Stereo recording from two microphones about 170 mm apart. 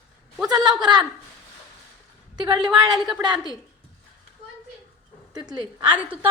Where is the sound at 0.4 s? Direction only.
25° right (ahead or behind).